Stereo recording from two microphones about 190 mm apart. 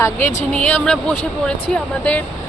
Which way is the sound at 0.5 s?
5° left (ahead or behind).